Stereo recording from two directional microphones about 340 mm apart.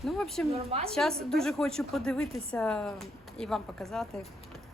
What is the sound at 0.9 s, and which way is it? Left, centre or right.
Speech, centre.